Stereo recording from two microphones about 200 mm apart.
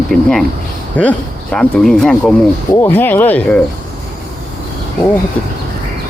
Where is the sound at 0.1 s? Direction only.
Centre (ahead or behind).